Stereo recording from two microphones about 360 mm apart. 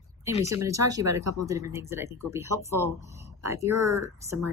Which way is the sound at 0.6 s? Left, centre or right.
Centre.